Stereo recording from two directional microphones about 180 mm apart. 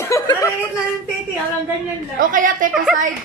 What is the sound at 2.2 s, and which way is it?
Speech, 50° right (ahead or behind).